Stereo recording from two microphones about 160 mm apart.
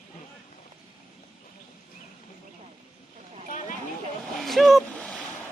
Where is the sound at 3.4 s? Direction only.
50° left (ahead or behind).